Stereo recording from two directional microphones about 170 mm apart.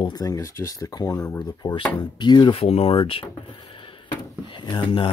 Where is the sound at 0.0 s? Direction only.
20° left (ahead or behind).